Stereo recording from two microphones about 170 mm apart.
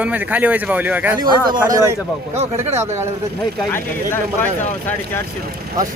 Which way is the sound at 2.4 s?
40° right (ahead or behind).